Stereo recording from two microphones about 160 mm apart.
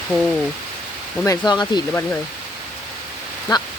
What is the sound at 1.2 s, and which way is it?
Speech, 25° left (ahead or behind).